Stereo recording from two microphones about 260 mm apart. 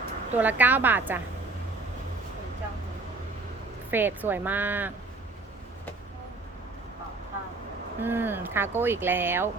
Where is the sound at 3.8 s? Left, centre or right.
Centre.